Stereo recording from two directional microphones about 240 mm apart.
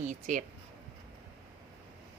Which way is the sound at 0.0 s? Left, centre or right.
Right.